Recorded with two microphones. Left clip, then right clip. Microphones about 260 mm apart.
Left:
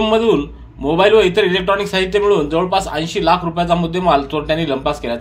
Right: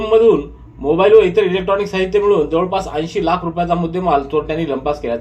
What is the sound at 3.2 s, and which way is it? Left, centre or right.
Speech, left.